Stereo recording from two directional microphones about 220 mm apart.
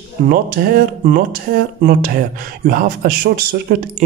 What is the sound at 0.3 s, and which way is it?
Speech, 40° right (ahead or behind).